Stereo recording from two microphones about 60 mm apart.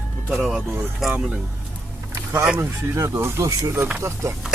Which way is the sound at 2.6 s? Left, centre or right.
Right.